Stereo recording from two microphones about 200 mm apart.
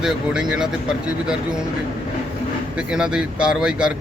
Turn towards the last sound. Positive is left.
turn(degrees=-5)  # may be behind; listen again after turning